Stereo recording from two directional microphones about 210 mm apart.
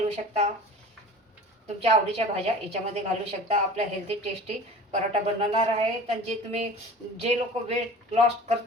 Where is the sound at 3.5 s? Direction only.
30° right (ahead or behind).